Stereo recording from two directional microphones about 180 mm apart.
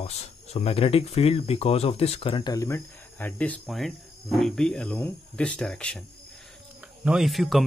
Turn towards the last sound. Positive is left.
turn(degrees=0)  # may be behind; listen again after turning